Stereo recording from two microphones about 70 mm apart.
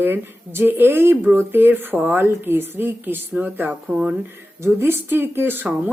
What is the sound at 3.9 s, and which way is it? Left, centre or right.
Speech, centre.